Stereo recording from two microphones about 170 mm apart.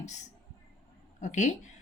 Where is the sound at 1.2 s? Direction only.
45° left (ahead or behind).